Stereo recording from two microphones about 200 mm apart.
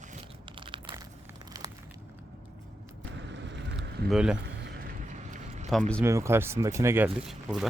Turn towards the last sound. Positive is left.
turn(degrees=-5)  # may be behind; listen again after turning